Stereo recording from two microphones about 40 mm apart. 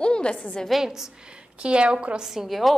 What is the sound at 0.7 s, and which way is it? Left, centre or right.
Speech, centre.